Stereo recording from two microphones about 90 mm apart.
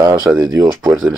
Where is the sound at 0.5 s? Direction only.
40° right (ahead or behind).